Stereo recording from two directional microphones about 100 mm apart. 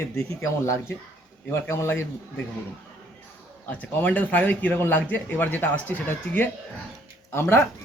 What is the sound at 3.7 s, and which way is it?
A man's voice, 15° left (ahead or behind).